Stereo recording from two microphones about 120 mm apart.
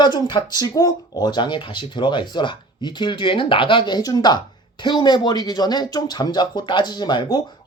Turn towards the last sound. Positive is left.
turn(degrees=40)  # may be behind; listen again after turning